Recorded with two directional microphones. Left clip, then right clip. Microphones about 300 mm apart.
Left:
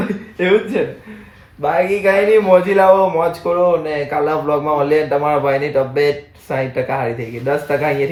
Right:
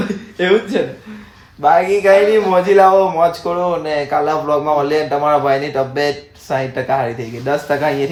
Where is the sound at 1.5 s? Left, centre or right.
Centre.